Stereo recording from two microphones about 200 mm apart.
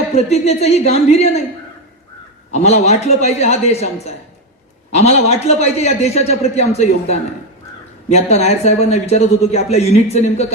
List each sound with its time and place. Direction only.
0.1 s a man's voice: 30° left (ahead or behind)
2.5 s a man's voice: 35° left (ahead or behind)